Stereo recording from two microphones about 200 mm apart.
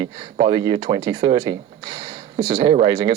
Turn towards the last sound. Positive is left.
turn(degrees=-20)  # may be behind; listen again after turning